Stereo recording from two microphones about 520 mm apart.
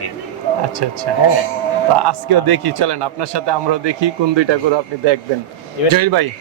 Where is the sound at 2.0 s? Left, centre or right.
Right.